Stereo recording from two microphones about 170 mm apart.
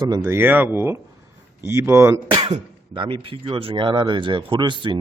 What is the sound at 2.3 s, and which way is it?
Speech, 35° right (ahead or behind).